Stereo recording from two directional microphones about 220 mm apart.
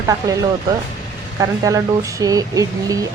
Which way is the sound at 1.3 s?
15° right (ahead or behind).